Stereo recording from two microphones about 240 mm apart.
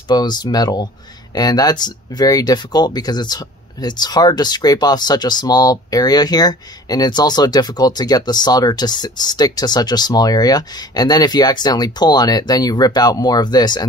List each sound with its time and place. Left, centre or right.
0.1 s speech: centre